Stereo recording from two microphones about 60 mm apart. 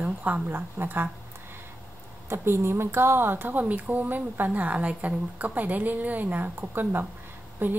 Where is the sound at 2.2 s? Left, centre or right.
Right.